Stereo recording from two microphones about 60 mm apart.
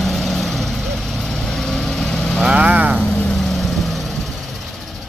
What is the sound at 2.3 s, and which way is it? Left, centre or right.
Vehicle, right.